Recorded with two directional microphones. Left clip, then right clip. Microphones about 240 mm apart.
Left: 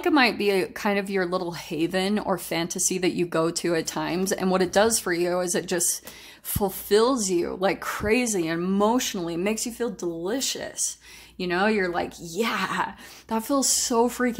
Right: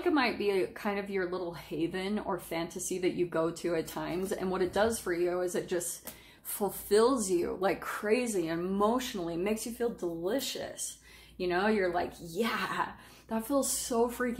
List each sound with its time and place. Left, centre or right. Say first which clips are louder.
0.0 s speech: left 8 dB; left
6.6 s speech: left 5 dB; left